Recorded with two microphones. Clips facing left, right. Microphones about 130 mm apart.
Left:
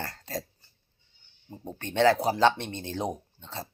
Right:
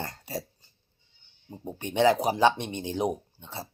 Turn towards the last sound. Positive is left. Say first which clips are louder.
# even
turn(degrees=-10)  # may be behind; listen again after turning